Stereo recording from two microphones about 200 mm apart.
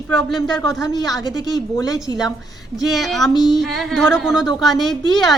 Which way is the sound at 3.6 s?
Centre (ahead or behind).